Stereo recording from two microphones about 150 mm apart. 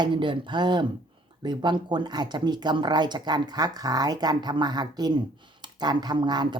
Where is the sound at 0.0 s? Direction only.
30° right (ahead or behind).